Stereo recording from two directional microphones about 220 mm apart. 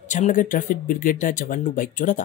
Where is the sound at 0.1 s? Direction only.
35° left (ahead or behind).